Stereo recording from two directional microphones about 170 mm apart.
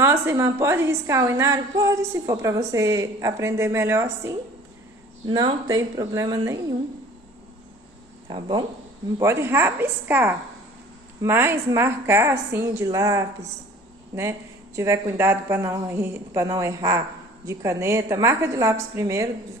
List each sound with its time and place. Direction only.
0.0 s a woman's voice: 15° right (ahead or behind)
8.3 s speech: 25° right (ahead or behind)
9.2 s a woman's voice: 15° right (ahead or behind)
14.8 s a woman's voice: 15° right (ahead or behind)